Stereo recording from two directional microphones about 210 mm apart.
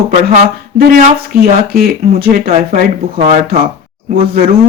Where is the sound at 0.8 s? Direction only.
40° right (ahead or behind).